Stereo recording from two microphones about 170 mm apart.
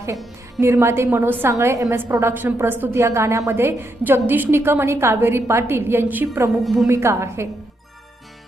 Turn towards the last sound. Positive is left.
turn(degrees=-15)  # may be behind; listen again after turning